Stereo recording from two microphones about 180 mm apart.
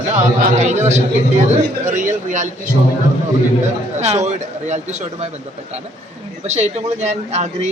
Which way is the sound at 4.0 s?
40° right (ahead or behind).